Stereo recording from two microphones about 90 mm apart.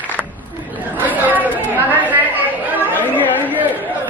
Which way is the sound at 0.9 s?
20° right (ahead or behind).